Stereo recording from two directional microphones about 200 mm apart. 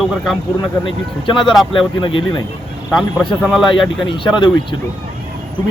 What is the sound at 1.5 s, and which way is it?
Speech, centre (ahead or behind).